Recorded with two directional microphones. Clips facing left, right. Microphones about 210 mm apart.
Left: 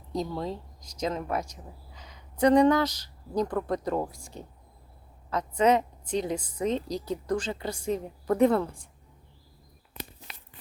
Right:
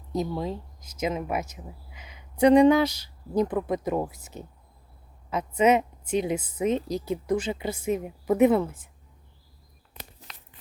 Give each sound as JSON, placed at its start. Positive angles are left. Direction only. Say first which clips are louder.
{"t": 0.1, "sound": "a woman's voice", "louder": "right 2 dB", "side_deg": -5}
{"t": 3.3, "sound": "speech", "louder": "right 3 dB", "side_deg": -20}
{"t": 3.6, "sound": "a woman's voice", "louder": "right 2 dB", "side_deg": -10}